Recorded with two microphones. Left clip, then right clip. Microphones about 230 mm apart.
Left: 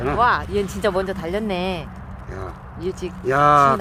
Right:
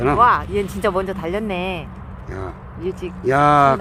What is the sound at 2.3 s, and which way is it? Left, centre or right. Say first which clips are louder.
Speech: right 3 dB; right.